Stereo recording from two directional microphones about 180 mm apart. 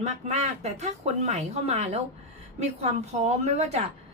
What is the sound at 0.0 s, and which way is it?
A woman's voice, 35° right (ahead or behind).